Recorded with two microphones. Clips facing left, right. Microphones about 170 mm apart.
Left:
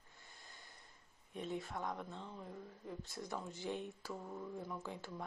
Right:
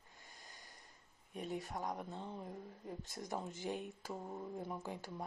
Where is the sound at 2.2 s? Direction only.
20° right (ahead or behind).